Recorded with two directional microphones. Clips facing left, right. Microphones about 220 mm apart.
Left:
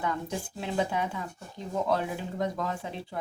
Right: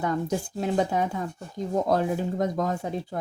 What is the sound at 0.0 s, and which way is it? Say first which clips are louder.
Speech: right 6 dB; 45° right (ahead or behind).